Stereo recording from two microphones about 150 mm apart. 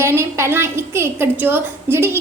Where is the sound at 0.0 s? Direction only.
15° right (ahead or behind).